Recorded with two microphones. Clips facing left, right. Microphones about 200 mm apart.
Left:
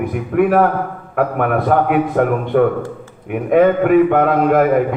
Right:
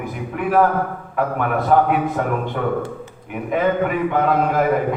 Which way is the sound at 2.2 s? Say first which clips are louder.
Left 7 dB; 60° left (ahead or behind).